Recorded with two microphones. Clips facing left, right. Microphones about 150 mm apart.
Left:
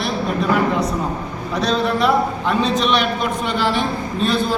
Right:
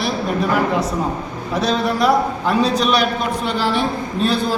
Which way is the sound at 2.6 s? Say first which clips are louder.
Right 1 dB; 35° right (ahead or behind).